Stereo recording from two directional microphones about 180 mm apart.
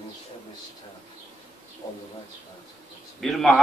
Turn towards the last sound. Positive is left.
turn(degrees=0)  # may be behind; listen again after turning